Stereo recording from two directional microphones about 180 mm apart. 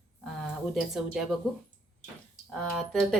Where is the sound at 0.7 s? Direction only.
Centre (ahead or behind).